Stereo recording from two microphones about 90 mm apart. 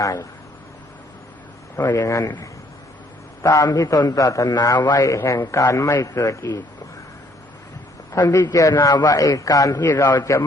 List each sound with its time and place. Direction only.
0.0 s a man's voice: 35° left (ahead or behind)
1.7 s speech: 25° left (ahead or behind)
2.0 s a man's voice: 35° left (ahead or behind)
3.4 s a man's voice: 40° left (ahead or behind)
5.0 s a man's voice: 35° left (ahead or behind)
8.4 s a man's voice: 40° left (ahead or behind)
9.8 s a man's voice: 30° left (ahead or behind)
10.1 s a man's voice: 40° left (ahead or behind)